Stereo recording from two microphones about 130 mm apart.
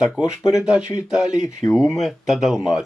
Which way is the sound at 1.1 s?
5° right (ahead or behind).